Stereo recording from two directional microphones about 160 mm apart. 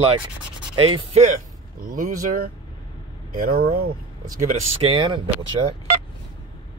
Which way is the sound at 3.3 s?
75° right (ahead or behind).